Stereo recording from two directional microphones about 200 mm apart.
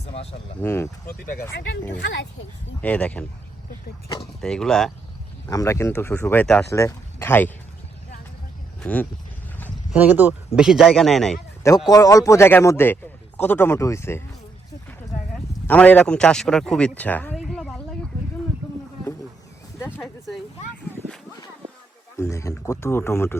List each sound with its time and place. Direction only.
0.0 s speech: 30° left (ahead or behind)
0.6 s a man's voice: 10° left (ahead or behind)
1.0 s speech: 45° left (ahead or behind)
2.8 s a man's voice: 5° left (ahead or behind)
4.4 s speech: 5° left (ahead or behind)
5.5 s a man's voice: 15° left (ahead or behind)
8.8 s speech: 5° left (ahead or behind)
9.9 s speech: 10° right (ahead or behind)
11.9 s a man's voice: 20° left (ahead or behind)
15.6 s speech: 10° left (ahead or behind)
20.0 s a sound: centre (ahead or behind)
22.2 s a man's voice: 15° left (ahead or behind)